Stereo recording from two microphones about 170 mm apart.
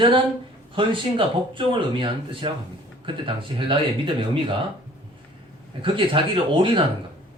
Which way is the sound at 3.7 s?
30° right (ahead or behind).